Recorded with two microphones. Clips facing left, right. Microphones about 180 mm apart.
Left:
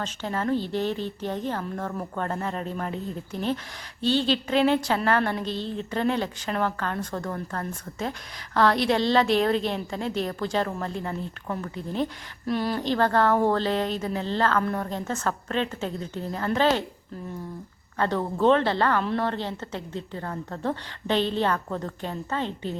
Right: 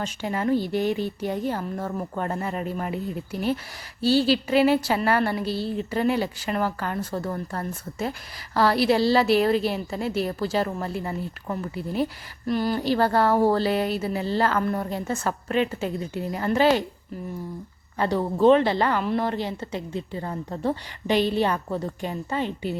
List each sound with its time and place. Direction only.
0.0 s a woman's voice: 10° right (ahead or behind)
17.9 s a woman's voice: 10° right (ahead or behind)